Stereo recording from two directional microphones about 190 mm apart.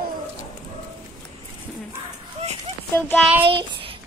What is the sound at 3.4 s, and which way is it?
Child singing, 30° right (ahead or behind).